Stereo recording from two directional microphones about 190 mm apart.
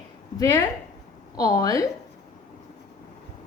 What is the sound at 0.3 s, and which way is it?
A woman's voice, 10° left (ahead or behind).